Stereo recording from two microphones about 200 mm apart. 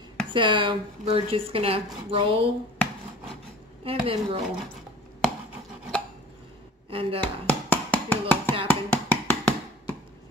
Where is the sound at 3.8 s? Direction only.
30° right (ahead or behind).